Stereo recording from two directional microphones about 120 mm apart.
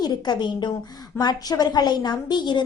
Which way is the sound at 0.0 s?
35° left (ahead or behind).